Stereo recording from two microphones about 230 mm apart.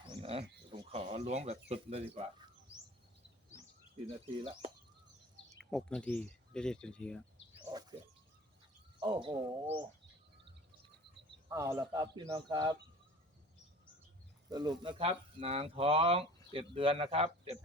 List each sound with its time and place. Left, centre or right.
0.0 s a sound: right
1.7 s speech: right
5.7 s speech: centre
7.6 s a sound: centre
9.0 s speech: right
11.4 s speech: centre
14.5 s speech: centre